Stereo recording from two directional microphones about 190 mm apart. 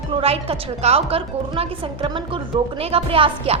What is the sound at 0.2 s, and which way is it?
A woman's voice, 30° right (ahead or behind).